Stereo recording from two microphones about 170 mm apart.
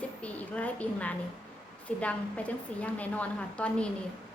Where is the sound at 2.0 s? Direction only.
10° left (ahead or behind).